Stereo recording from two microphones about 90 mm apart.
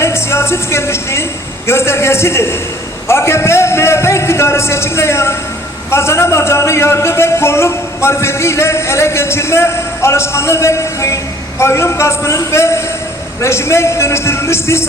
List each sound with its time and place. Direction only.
0.0 s music: 30° left (ahead or behind)
11.6 s a man's voice: 30° left (ahead or behind)